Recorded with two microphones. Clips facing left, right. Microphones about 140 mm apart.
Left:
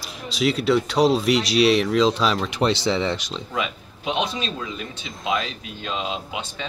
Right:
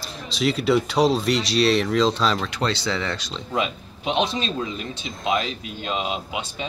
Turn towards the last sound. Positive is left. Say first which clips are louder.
# right 2 dB
turn(degrees=-20)  # may be behind; listen again after turning